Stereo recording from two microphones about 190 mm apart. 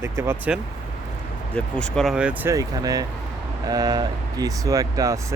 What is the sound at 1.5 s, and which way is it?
Speech, 5° left (ahead or behind).